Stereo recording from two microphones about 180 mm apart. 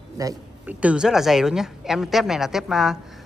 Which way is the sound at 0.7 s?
5° right (ahead or behind).